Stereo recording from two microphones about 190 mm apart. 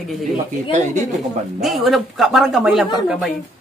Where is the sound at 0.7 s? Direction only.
40° right (ahead or behind).